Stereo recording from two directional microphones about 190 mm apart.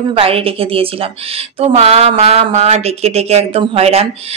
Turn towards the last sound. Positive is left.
turn(degrees=-30)  # may be behind; listen again after turning